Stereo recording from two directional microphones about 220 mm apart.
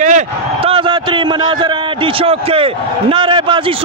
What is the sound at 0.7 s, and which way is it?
A man's voice, 25° right (ahead or behind).